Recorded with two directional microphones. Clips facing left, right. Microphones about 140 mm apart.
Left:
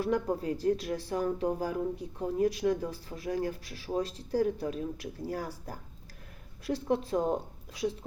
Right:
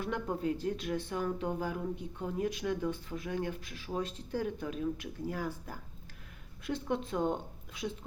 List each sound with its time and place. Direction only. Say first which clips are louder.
0.0 s speech: left 4 dB; 35° left (ahead or behind)